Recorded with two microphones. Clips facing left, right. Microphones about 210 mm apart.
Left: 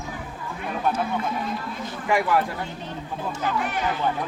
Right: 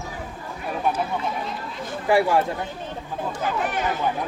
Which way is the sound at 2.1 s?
30° right (ahead or behind).